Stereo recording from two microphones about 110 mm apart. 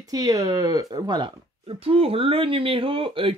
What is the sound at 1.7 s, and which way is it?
Speech, 60° right (ahead or behind).